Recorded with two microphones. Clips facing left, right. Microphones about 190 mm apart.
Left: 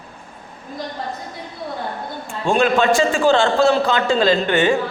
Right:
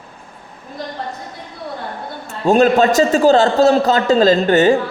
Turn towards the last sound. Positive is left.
turn(degrees=-40)  # may be behind; listen again after turning